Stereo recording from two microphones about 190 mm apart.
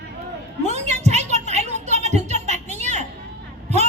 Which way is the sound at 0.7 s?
35° right (ahead or behind).